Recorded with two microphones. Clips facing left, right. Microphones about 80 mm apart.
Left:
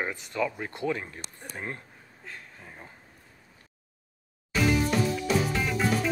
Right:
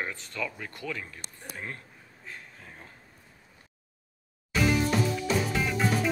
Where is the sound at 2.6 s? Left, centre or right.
Centre.